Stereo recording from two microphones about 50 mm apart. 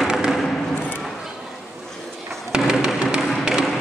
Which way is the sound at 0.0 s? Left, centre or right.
Centre.